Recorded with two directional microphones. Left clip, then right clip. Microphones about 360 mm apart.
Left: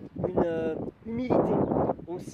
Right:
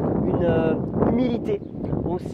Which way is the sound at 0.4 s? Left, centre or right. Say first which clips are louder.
Right 4 dB; right.